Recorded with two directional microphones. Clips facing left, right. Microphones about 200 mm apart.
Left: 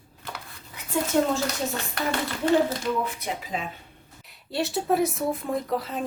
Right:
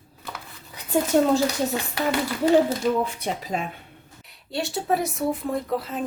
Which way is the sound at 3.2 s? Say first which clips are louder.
Right 3 dB; 40° right (ahead or behind).